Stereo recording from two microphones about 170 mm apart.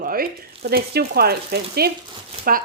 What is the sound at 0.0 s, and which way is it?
Speech, 60° right (ahead or behind).